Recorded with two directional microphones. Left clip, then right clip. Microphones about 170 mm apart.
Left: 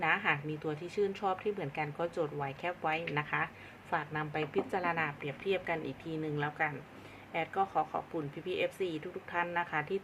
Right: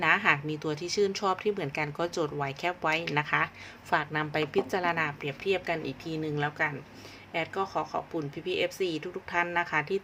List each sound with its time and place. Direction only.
0.0 s a woman's voice: 25° right (ahead or behind)